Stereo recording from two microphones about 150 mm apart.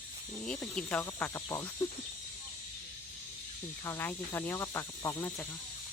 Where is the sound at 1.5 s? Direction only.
20° left (ahead or behind).